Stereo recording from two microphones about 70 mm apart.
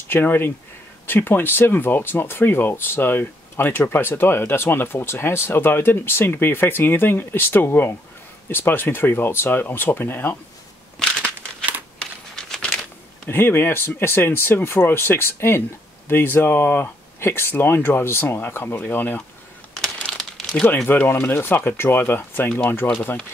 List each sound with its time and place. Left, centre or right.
0.1 s speech: left
12.0 s crumpling: centre
13.3 s speech: left
19.8 s crumpling: centre
20.6 s speech: left